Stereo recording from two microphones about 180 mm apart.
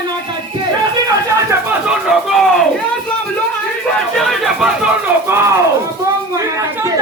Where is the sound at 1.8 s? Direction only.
5° right (ahead or behind).